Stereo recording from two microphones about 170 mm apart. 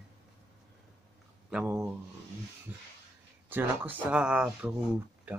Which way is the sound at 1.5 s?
5° right (ahead or behind).